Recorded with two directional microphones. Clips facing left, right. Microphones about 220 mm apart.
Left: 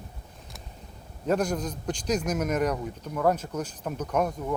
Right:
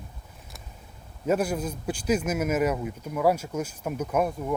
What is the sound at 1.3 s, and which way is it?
A man's voice, 5° right (ahead or behind).